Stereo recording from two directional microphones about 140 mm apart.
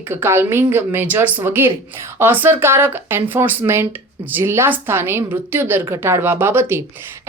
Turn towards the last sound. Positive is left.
turn(degrees=-15)  # may be behind; listen again after turning